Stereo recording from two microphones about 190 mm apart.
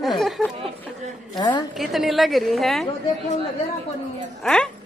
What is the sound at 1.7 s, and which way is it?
A woman's voice, centre (ahead or behind).